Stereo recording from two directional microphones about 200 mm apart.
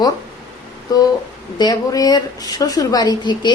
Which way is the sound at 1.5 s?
20° left (ahead or behind).